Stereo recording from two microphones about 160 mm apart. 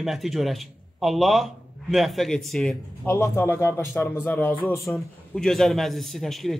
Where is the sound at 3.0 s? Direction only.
15° left (ahead or behind).